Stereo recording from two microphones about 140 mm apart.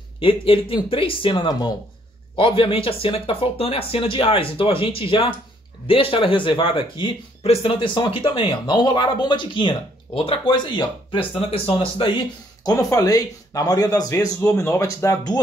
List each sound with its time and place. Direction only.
0.2 s a man's voice: 40° left (ahead or behind); by 15.3 s 20° left (ahead or behind)